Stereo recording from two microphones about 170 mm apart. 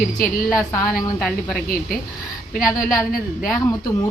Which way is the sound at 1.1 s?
5° left (ahead or behind).